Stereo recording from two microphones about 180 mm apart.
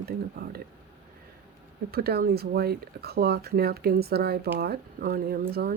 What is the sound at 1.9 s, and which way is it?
Speech, 60° right (ahead or behind).